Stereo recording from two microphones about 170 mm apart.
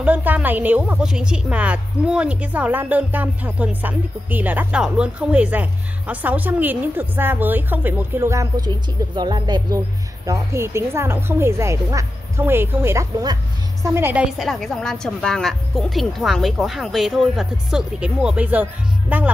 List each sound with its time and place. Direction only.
0.0 s a woman's voice: 10° right (ahead or behind)